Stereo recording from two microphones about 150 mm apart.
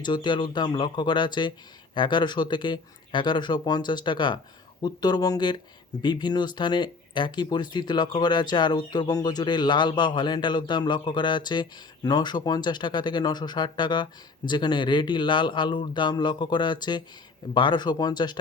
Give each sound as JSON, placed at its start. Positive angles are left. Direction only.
{"t": 0.0, "sound": "speech", "side_deg": 30}